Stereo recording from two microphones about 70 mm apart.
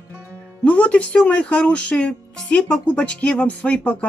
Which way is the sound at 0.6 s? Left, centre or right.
Centre.